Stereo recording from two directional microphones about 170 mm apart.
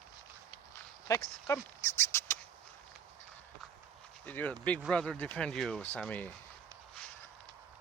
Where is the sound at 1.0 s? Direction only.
20° left (ahead or behind).